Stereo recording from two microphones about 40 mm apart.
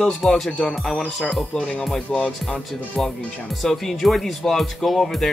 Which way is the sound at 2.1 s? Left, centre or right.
Centre.